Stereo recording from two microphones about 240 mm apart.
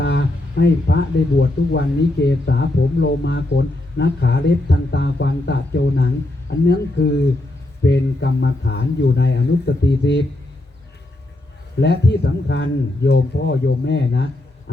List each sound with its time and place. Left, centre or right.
0.0 s speech: left
11.8 s speech: left